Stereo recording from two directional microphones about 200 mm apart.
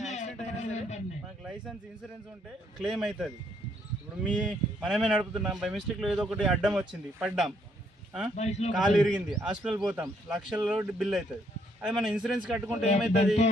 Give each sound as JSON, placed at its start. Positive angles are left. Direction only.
{"t": 0.0, "sound": "a sound", "side_deg": 35}
{"t": 2.7, "sound": "speech", "side_deg": -5}
{"t": 8.4, "sound": "a man's voice", "side_deg": 35}
{"t": 8.7, "sound": "speech", "side_deg": 0}
{"t": 12.8, "sound": "a man's voice", "side_deg": 35}